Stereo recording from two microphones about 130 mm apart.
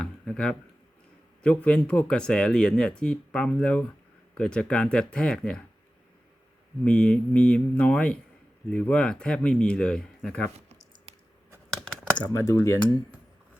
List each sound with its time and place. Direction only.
0.0 s a sound: 5° left (ahead or behind)
1.4 s speech: 10° left (ahead or behind)
6.8 s speech: 10° left (ahead or behind)
11.1 s a sound: 50° right (ahead or behind)
11.7 s computer keyboard: 5° left (ahead or behind)
12.2 s speech: 25° left (ahead or behind)